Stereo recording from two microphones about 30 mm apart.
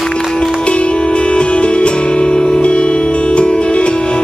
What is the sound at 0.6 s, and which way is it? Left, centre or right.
Music, left.